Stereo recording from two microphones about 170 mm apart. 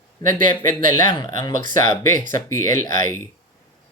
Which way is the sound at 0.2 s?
25° left (ahead or behind).